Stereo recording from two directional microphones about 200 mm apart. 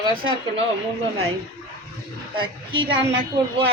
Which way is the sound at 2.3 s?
25° right (ahead or behind).